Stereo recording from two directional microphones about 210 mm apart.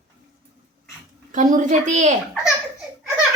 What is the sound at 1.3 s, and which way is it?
Speech, 40° right (ahead or behind).